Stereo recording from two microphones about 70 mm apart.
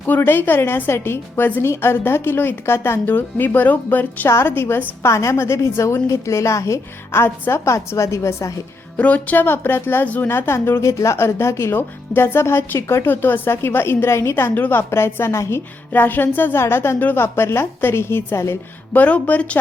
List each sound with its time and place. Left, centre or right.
0.0 s a woman's voice: left
9.0 s a woman's voice: left
18.9 s a woman's voice: left